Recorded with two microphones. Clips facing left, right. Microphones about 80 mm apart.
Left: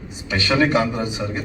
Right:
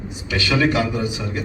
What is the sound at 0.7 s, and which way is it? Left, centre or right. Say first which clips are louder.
Speech: left 1 dB; left.